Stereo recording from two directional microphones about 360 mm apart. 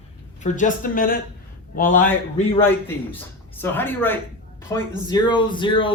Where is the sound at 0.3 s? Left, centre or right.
Centre.